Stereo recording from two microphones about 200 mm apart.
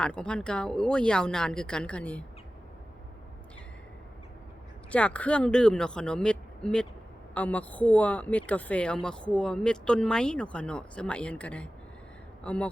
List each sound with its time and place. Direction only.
0.0 s speech: 5° left (ahead or behind)
4.9 s speech: 5° left (ahead or behind)